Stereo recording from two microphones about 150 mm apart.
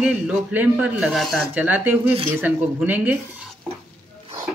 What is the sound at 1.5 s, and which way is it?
Speech, 10° right (ahead or behind).